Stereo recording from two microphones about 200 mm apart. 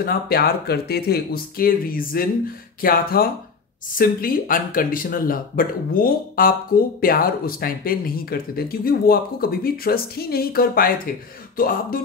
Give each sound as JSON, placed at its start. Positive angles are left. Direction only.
{"t": 0.0, "sound": "speech", "side_deg": 50}